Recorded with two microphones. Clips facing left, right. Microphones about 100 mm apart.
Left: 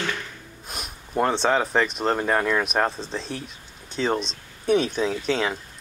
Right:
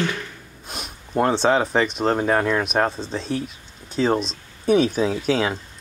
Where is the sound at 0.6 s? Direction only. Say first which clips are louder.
Right 2 dB; centre (ahead or behind).